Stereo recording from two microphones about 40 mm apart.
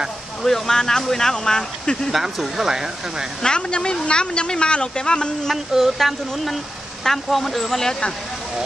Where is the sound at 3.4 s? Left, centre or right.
Left.